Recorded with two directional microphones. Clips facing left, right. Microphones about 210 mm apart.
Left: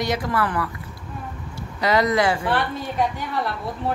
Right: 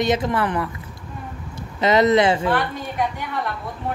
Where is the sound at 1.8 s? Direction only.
20° right (ahead or behind).